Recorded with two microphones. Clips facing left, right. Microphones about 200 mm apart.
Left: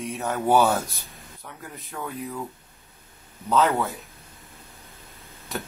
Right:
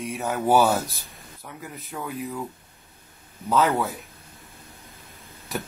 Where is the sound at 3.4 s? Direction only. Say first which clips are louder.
Even; 5° right (ahead or behind).